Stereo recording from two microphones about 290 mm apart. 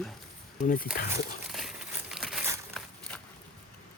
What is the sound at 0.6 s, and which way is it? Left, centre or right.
Speech, left.